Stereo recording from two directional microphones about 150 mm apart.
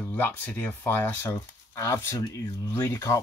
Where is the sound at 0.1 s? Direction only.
10° left (ahead or behind).